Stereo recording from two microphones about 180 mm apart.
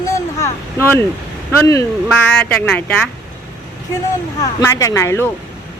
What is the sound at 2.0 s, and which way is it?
Speech, 5° left (ahead or behind).